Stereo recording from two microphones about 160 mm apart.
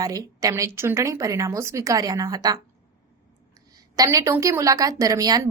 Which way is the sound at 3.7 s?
20° right (ahead or behind).